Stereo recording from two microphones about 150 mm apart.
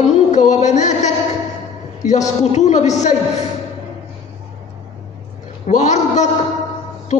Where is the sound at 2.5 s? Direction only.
50° left (ahead or behind).